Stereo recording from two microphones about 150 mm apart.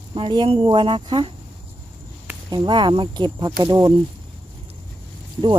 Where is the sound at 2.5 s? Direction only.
30° right (ahead or behind).